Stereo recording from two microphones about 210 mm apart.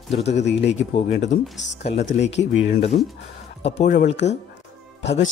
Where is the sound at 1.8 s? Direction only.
30° left (ahead or behind).